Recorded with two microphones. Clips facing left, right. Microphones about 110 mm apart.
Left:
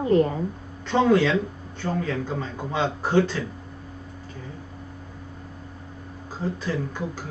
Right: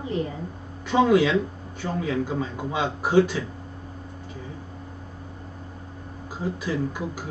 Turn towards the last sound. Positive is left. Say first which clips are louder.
# right 1 dB
turn(degrees=-10)  # may be behind; listen again after turning